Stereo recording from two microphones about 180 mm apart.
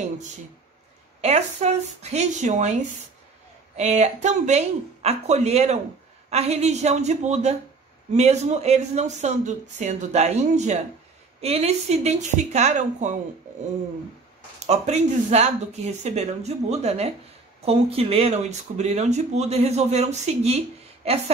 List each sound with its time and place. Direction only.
1.2 s speech: 35° right (ahead or behind)
3.7 s speech: 40° right (ahead or behind)
14.7 s speech: 40° right (ahead or behind)